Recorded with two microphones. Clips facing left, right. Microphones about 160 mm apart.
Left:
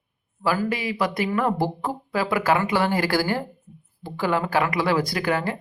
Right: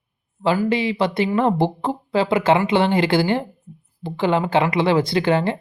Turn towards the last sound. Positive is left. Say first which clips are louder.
# right 6 dB
turn(degrees=-25)  # may be behind; listen again after turning